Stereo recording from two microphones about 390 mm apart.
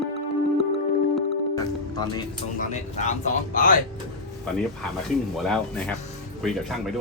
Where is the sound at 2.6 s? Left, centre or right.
Centre.